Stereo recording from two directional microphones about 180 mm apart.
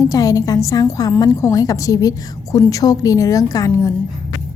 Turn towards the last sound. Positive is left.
turn(degrees=20)  # may be behind; listen again after turning